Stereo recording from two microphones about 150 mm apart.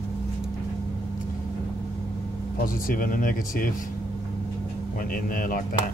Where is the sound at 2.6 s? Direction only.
65° left (ahead or behind).